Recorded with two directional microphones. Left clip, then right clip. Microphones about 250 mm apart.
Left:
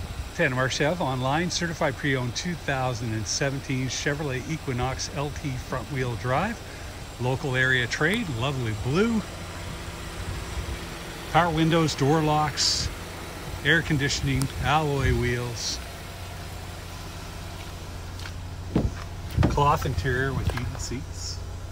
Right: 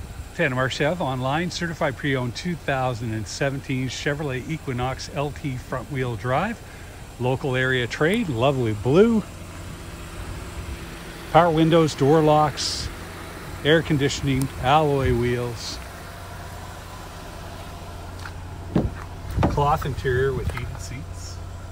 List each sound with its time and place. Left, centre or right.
0.4 s speech: centre
11.3 s speech: centre
19.5 s speech: centre